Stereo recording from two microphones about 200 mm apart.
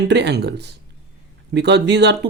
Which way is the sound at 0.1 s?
55° right (ahead or behind).